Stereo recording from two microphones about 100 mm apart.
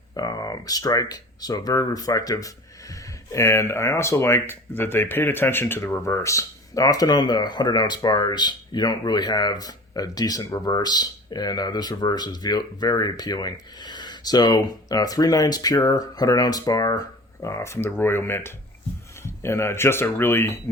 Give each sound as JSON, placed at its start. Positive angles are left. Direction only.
{"t": 0.1, "sound": "speech", "side_deg": 40}